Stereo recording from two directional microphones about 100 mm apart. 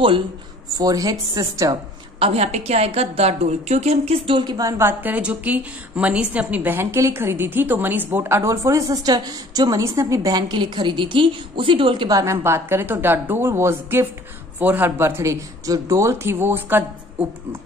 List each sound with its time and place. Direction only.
0.7 s speech: 40° right (ahead or behind)
2.1 s a woman's voice: 85° right
4.5 s a woman's voice: 35° right (ahead or behind); by 12.1 s 55° right (ahead or behind)
12.1 s a woman's voice: 35° right (ahead or behind)